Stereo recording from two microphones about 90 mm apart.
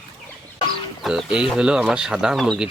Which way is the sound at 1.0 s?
5° right (ahead or behind).